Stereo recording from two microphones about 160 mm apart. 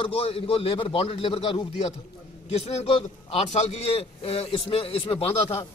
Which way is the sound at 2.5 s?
40° left (ahead or behind).